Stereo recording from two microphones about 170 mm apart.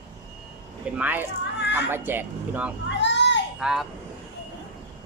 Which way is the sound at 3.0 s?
90° left.